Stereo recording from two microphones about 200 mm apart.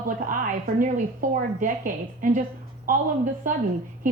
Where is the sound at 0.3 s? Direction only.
40° right (ahead or behind).